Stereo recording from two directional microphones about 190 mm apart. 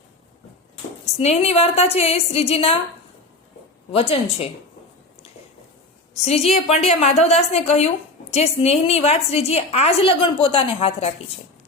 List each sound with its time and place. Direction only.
1.2 s a woman's voice: 35° left (ahead or behind)
3.9 s a woman's voice: 30° left (ahead or behind)
6.2 s a woman's voice: 35° left (ahead or behind)